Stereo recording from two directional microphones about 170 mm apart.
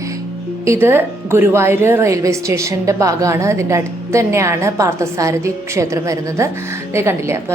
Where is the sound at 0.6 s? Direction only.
15° right (ahead or behind).